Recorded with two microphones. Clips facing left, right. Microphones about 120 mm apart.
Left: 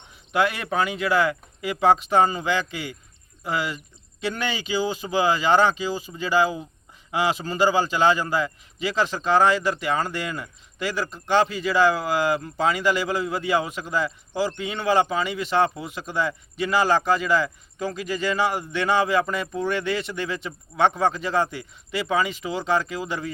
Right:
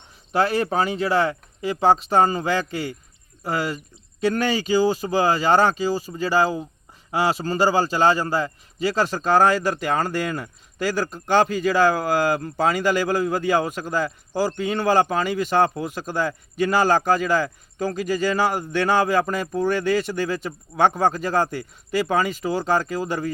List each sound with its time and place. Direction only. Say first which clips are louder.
0.3 s a man's voice: right 2 dB; 35° right (ahead or behind)